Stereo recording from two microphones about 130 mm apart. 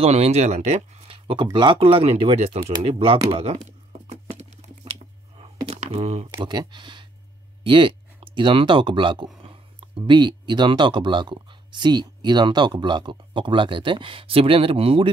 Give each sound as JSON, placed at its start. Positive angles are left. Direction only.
{"t": 0.0, "sound": "speech", "side_deg": -55}
{"t": 4.1, "sound": "a sound", "side_deg": -60}
{"t": 5.7, "sound": "speech", "side_deg": -55}
{"t": 6.3, "sound": "speech", "side_deg": -30}